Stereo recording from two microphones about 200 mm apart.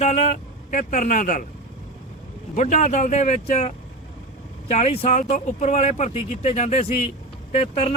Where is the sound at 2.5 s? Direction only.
35° left (ahead or behind).